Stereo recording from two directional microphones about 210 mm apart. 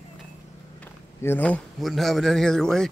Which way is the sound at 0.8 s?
10° left (ahead or behind).